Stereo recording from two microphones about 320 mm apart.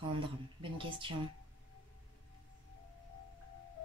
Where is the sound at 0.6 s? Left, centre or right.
Centre.